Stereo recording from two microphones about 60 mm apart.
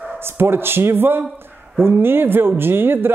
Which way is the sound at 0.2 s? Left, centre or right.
Right.